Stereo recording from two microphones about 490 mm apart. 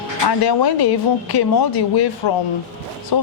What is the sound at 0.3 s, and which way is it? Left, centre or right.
Speech, left.